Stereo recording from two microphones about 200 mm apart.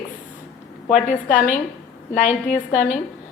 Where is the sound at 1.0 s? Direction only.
40° left (ahead or behind).